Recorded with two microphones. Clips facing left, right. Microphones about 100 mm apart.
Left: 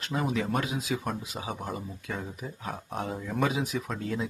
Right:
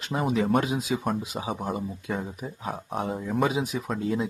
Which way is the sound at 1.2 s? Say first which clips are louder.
Right 5 dB; 15° right (ahead or behind).